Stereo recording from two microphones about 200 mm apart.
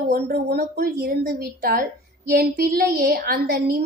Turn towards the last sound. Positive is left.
turn(degrees=-50)  # may be behind; listen again after turning